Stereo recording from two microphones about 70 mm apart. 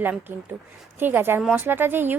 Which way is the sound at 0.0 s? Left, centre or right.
Right.